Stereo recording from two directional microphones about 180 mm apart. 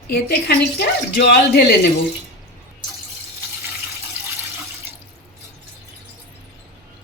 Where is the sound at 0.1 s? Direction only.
60° left (ahead or behind).